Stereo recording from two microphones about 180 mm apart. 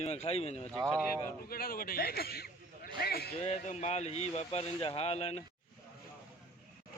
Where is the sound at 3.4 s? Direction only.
40° left (ahead or behind).